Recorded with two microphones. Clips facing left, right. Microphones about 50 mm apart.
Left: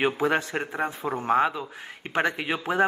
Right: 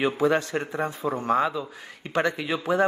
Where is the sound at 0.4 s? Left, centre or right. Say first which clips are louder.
Right 1 dB; centre.